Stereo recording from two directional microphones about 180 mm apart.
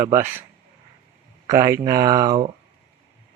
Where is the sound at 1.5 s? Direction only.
20° right (ahead or behind).